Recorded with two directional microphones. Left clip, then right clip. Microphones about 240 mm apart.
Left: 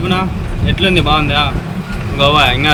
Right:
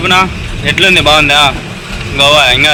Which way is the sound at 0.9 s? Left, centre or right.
Centre.